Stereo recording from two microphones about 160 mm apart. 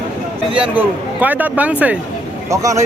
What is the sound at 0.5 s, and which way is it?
Speech, 10° right (ahead or behind).